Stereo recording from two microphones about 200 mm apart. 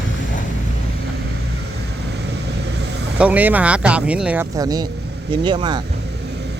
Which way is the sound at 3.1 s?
5° right (ahead or behind).